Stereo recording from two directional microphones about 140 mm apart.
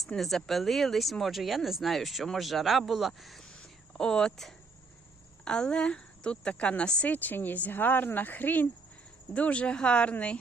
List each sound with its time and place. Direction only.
0.0 s speech: centre (ahead or behind)